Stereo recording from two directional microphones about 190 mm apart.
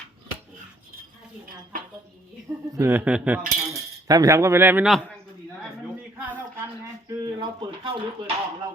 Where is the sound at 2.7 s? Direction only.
15° right (ahead or behind).